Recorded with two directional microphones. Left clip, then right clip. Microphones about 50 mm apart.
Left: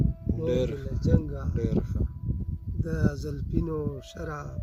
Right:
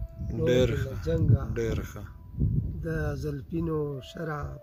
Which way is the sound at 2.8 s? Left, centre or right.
Left.